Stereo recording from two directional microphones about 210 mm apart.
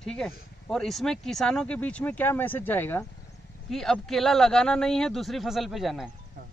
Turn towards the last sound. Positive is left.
turn(degrees=0)  # may be behind; listen again after turning